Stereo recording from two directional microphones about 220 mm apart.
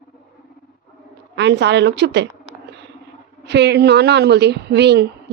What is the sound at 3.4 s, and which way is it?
A woman's voice, 50° right (ahead or behind).